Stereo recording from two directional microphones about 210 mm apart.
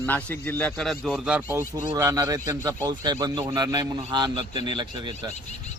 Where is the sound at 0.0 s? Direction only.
10° left (ahead or behind).